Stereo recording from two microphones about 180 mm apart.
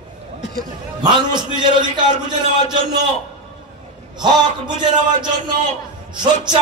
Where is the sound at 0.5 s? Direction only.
25° right (ahead or behind).